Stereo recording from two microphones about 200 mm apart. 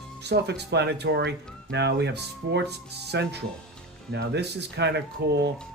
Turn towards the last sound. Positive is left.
turn(degrees=-55)  # may be behind; listen again after turning